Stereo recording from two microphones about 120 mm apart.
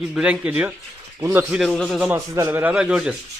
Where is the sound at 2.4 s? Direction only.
15° right (ahead or behind).